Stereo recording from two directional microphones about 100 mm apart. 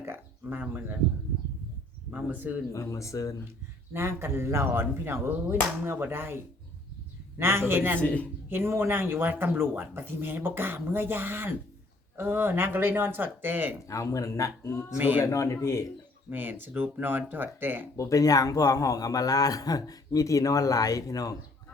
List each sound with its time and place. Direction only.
0.0 s speech: 20° right (ahead or behind)
2.0 s speech: 15° right (ahead or behind)
2.7 s a man's voice: 30° left (ahead or behind)
3.9 s speech: 25° right (ahead or behind)
8.0 s speech: 15° left (ahead or behind)
8.4 s speech: 20° right (ahead or behind)
13.8 s a man's voice: 35° left (ahead or behind)
14.8 s speech: 15° right (ahead or behind)
15.2 s a man's voice: 30° left (ahead or behind)
16.3 s speech: 20° right (ahead or behind)
17.9 s a man's voice: 35° left (ahead or behind)